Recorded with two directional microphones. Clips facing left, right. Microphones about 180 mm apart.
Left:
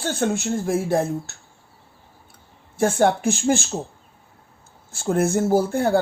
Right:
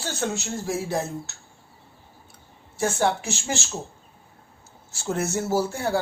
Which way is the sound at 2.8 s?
55° left (ahead or behind).